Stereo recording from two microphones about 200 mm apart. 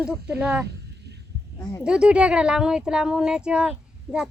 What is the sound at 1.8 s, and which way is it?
Speech, 5° right (ahead or behind).